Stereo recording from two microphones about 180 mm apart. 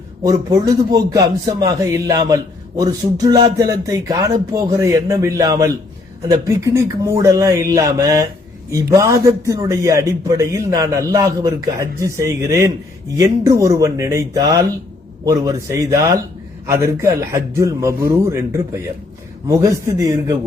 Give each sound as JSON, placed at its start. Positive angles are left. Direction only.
{"t": 0.2, "sound": "a man's voice", "side_deg": -20}